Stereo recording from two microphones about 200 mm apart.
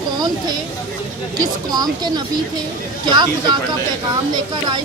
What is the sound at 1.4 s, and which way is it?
Speech, 20° right (ahead or behind).